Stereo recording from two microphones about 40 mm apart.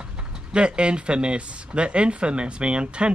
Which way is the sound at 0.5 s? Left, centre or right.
Right.